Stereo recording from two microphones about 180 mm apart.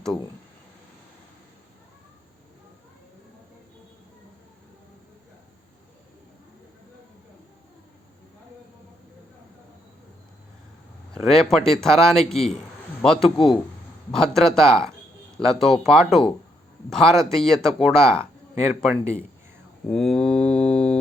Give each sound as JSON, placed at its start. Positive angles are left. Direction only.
{"t": 11.1, "sound": "speech", "side_deg": 0}
{"t": 13.3, "sound": "a man's voice", "side_deg": 25}
{"t": 14.1, "sound": "speech", "side_deg": 5}